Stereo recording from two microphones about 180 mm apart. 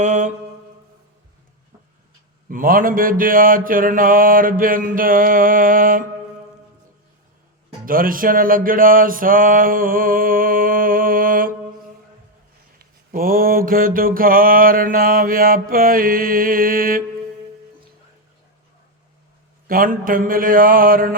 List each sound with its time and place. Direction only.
0.0 s mantra: 45° right (ahead or behind)
2.5 s mantra: 50° right (ahead or behind)
7.9 s mantra: 50° right (ahead or behind)
12.8 s mantra: 55° right (ahead or behind)
19.6 s mantra: 50° right (ahead or behind)